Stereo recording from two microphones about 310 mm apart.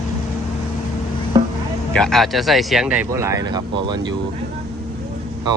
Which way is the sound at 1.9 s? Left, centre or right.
Centre.